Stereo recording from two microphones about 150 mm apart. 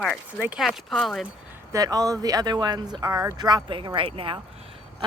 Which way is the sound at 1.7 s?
25° right (ahead or behind).